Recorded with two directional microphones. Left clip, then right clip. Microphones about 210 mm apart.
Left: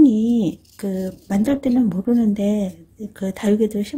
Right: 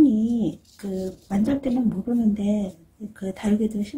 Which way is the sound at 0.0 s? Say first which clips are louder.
Left 4 dB; 50° left (ahead or behind).